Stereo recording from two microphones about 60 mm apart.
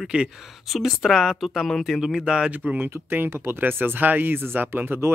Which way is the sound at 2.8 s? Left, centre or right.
Right.